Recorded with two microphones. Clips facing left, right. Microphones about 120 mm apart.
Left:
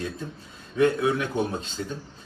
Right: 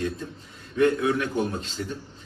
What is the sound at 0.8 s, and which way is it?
Speech, 20° left (ahead or behind).